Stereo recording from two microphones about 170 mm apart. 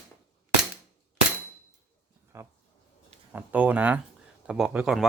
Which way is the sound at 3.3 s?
10° right (ahead or behind).